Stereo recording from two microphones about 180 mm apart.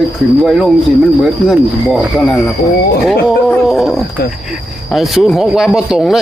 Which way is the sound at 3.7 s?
Centre (ahead or behind).